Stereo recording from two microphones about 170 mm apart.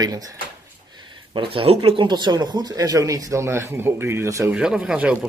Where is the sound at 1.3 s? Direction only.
30° right (ahead or behind).